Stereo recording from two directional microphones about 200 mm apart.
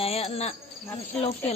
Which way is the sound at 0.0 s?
30° left (ahead or behind).